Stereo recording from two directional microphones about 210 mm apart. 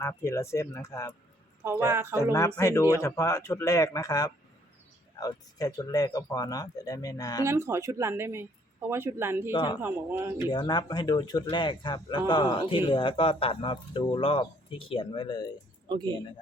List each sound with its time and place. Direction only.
0.0 s speech: 15° left (ahead or behind)
1.6 s speech: 10° right (ahead or behind)
2.6 s speech: 15° left (ahead or behind)
7.4 s speech: 15° right (ahead or behind)
9.5 s a man's voice: 20° left (ahead or behind)
9.8 s speech: 10° right (ahead or behind)
10.5 s a man's voice: 20° left (ahead or behind)
15.9 s speech: 20° right (ahead or behind)